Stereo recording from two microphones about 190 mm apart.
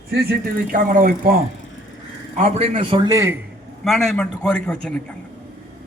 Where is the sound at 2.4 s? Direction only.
35° right (ahead or behind); by 3.3 s 15° right (ahead or behind).